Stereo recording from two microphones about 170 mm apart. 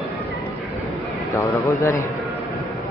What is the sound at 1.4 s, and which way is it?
Speech, 15° left (ahead or behind).